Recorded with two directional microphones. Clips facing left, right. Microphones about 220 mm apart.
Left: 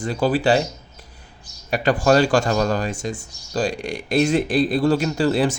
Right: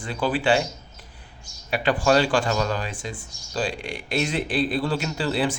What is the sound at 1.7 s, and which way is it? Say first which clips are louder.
Speech: left 3 dB; 45° left (ahead or behind).